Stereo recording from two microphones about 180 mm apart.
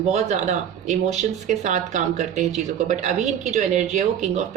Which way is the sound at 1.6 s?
40° right (ahead or behind).